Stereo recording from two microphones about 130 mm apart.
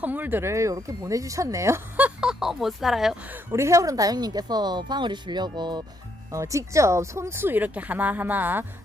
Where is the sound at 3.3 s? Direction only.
20° right (ahead or behind).